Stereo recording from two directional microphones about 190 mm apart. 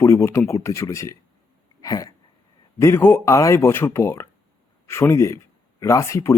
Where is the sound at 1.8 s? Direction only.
20° left (ahead or behind).